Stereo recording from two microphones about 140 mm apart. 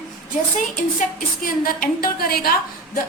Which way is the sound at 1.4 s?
90° left.